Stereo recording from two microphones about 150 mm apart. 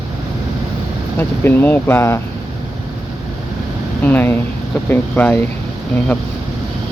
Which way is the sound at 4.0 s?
10° left (ahead or behind).